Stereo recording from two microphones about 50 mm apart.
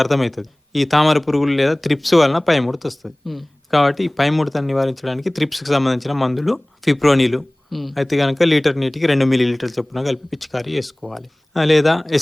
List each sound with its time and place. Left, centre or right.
0.0 s speech: centre